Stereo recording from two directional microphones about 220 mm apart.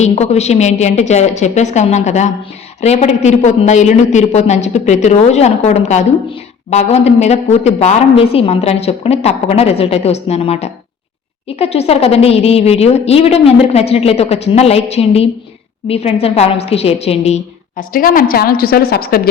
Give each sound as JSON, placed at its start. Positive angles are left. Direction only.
{"t": 0.0, "sound": "a woman's voice", "side_deg": 30}